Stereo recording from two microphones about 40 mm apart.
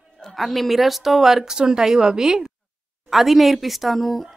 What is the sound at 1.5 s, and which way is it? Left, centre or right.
Speech, centre.